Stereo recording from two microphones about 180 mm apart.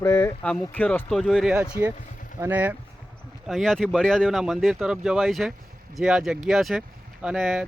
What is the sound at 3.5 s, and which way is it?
Speech, centre (ahead or behind).